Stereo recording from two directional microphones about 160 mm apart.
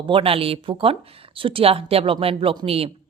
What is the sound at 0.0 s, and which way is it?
A woman's voice, 35° right (ahead or behind).